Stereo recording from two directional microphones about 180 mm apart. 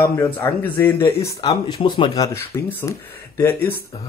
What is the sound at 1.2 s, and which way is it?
Speech, 25° left (ahead or behind).